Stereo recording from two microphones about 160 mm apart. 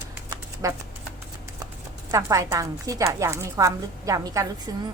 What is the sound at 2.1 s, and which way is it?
A woman's voice, 20° right (ahead or behind).